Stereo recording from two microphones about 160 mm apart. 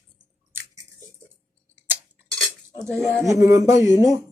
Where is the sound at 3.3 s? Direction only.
20° right (ahead or behind).